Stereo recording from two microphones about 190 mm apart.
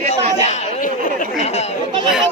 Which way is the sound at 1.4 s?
35° left (ahead or behind).